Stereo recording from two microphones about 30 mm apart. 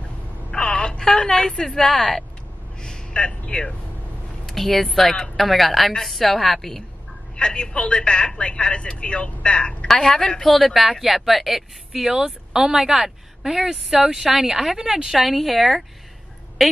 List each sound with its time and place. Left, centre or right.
0.5 s telephone dialing: left
0.9 s a woman's voice: left
2.8 s a man's voice: left
4.6 s a woman's voice: centre
7.3 s a woman's voice: left
10.0 s a woman's voice: left
10.5 s a woman's voice: centre
15.0 s a woman's voice: centre